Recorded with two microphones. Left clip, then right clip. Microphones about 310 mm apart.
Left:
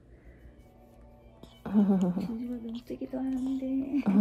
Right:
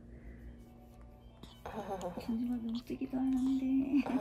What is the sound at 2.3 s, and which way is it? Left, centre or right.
Speech, centre.